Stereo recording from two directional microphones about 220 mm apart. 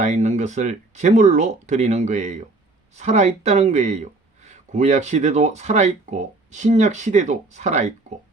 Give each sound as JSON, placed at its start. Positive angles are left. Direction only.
{"t": 0.0, "sound": "speech", "side_deg": -30}